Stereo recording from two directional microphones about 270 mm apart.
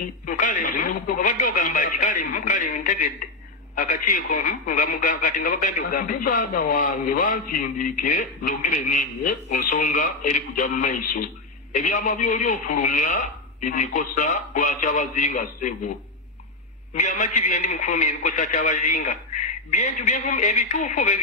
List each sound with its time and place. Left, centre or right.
0.3 s a man's voice: left
16.9 s a man's voice: left